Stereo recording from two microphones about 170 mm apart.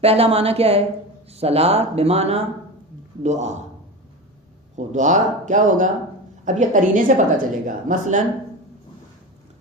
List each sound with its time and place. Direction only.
0.0 s a woman's voice: 35° right (ahead or behind)
4.8 s a woman's voice: 45° right (ahead or behind)